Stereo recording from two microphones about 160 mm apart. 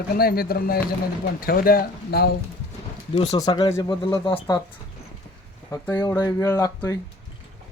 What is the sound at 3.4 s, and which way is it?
Speech, 25° left (ahead or behind).